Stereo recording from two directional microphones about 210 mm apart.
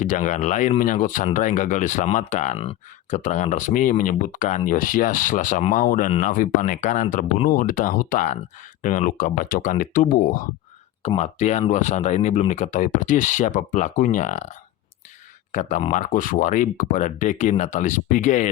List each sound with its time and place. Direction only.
0.0 s speech: 35° left (ahead or behind)
15.5 s speech: 35° left (ahead or behind)